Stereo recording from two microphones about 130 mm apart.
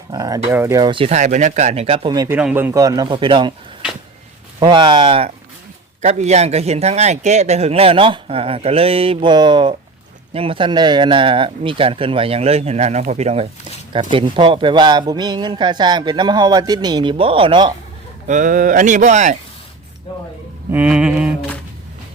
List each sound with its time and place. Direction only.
0.1 s speech: 30° right (ahead or behind)
0.8 s a man's voice: 40° right (ahead or behind)
1.1 s speech: 65° right (ahead or behind); by 2.1 s 50° right (ahead or behind)
2.3 s a man's voice: 15° right (ahead or behind)
2.8 s a man's voice: 30° right (ahead or behind)
4.6 s a man's voice: 35° right (ahead or behind)
6.0 s a man's voice: 60° right (ahead or behind)
13.9 s a man's voice: 40° right (ahead or behind)
18.3 s speech: 80° right
20.7 s a sound: 10° right (ahead or behind)